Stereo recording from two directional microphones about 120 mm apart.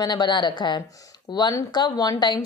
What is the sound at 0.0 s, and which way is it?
A woman's voice, 40° left (ahead or behind).